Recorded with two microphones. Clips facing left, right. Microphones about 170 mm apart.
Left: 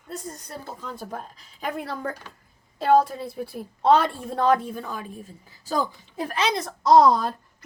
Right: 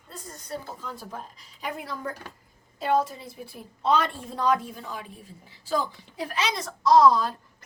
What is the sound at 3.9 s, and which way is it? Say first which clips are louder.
A woman's voice: left 5 dB; 55° left (ahead or behind).